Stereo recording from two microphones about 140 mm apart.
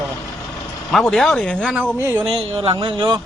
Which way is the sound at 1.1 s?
Centre (ahead or behind).